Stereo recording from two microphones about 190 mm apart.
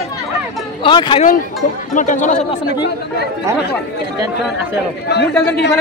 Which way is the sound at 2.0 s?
40° left (ahead or behind).